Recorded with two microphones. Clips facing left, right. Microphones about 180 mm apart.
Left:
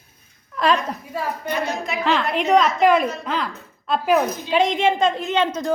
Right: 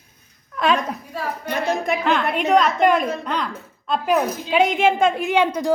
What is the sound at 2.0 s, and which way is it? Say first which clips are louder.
Speech: left 2 dB; centre (ahead or behind).